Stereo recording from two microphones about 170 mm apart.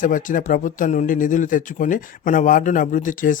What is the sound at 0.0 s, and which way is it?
Speech, 50° left (ahead or behind).